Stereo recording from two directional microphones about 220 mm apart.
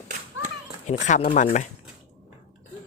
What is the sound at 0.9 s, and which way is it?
Speech, 30° left (ahead or behind).